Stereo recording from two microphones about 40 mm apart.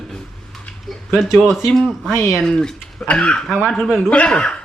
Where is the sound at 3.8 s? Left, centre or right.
Centre.